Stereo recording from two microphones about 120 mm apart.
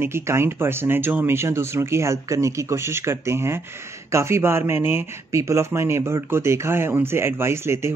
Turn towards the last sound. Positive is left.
turn(degrees=-20)  # may be behind; listen again after turning